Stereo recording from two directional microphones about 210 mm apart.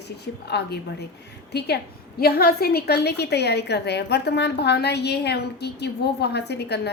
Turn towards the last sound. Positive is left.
turn(degrees=50)  # may be behind; listen again after turning